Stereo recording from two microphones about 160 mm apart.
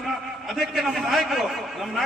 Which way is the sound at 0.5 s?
Centre (ahead or behind).